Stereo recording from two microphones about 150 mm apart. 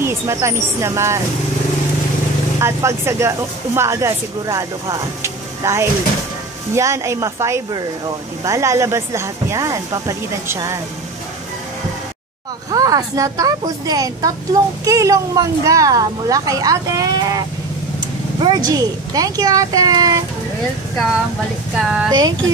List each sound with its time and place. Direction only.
0.0 s a woman's voice: 20° right (ahead or behind)
2.6 s a woman's voice: 20° right (ahead or behind)
12.7 s a woman's voice: 25° right (ahead or behind)
18.4 s a woman's voice: 25° right (ahead or behind)
21.7 s speech: 5° right (ahead or behind)